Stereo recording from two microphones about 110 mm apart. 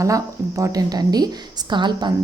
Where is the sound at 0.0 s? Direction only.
30° right (ahead or behind).